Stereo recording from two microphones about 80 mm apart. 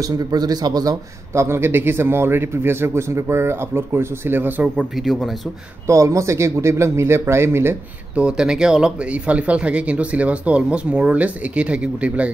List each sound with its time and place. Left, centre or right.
0.0 s a man's voice: right
1.3 s a man's voice: right
4.7 s speech: centre
5.9 s a man's voice: right
8.2 s speech: centre